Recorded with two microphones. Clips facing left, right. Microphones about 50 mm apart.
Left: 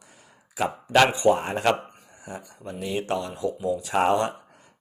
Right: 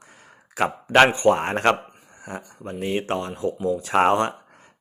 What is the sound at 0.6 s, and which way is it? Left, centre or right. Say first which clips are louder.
Speech: right 3 dB; right.